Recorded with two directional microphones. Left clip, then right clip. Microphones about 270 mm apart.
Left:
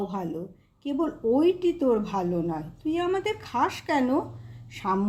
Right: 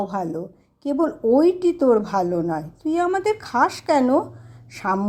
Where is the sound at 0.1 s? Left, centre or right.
Right.